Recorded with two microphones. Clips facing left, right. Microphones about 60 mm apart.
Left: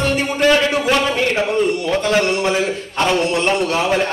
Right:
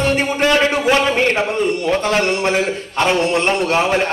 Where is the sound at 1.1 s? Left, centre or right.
Right.